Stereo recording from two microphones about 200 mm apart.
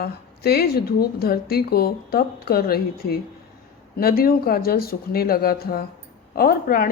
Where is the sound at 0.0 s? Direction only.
50° left (ahead or behind).